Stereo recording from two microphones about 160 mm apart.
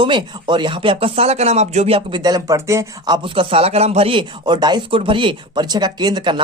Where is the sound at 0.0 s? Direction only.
30° right (ahead or behind).